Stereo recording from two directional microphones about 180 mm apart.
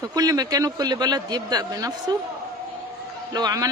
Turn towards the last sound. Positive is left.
turn(degrees=-20)  # may be behind; listen again after turning